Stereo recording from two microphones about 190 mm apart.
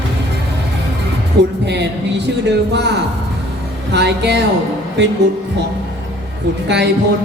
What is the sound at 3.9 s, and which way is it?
Speech, 65° right (ahead or behind).